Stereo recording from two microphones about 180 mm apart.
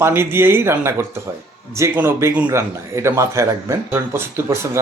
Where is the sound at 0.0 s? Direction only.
15° right (ahead or behind).